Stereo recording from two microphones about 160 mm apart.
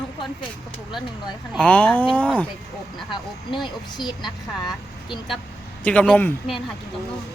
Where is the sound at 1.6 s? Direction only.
10° left (ahead or behind).